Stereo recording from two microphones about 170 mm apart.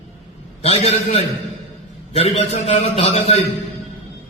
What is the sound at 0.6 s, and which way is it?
A man's voice, 35° left (ahead or behind).